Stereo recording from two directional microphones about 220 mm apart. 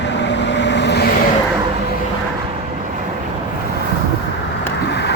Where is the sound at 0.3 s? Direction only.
55° left (ahead or behind).